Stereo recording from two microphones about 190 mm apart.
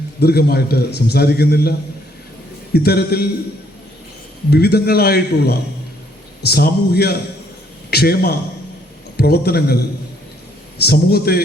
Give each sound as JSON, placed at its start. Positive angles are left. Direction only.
{"t": 0.2, "sound": "a man's voice", "side_deg": 55}
{"t": 2.7, "sound": "a man's voice", "side_deg": 55}
{"t": 4.5, "sound": "a man's voice", "side_deg": 55}
{"t": 10.8, "sound": "a man's voice", "side_deg": 55}